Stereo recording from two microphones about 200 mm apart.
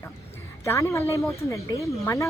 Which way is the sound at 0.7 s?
15° left (ahead or behind).